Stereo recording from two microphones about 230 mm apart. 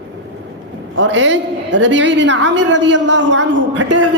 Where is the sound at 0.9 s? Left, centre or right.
Right.